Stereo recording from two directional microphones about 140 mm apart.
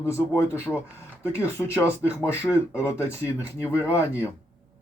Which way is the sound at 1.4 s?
20° left (ahead or behind).